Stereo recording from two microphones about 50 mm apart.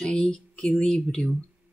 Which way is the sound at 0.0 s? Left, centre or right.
Centre.